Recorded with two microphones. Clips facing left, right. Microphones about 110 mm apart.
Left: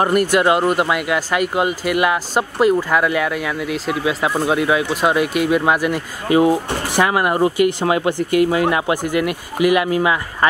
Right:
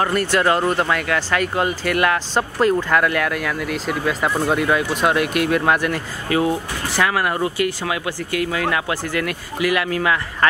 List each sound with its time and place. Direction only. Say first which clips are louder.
0.0 s speech: left 3 dB; 15° left (ahead or behind)
6.2 s speech: left 6 dB; 20° left (ahead or behind)
7.8 s speech: left 7 dB; 35° left (ahead or behind)
8.2 s speech: left 7 dB; 20° left (ahead or behind)